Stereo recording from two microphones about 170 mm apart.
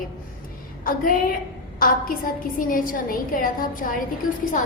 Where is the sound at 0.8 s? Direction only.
55° left (ahead or behind).